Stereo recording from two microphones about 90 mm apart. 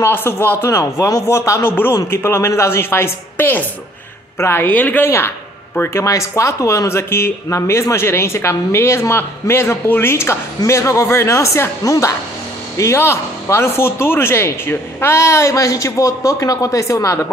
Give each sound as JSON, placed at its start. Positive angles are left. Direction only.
{"t": 0.0, "sound": "a man's voice", "side_deg": 25}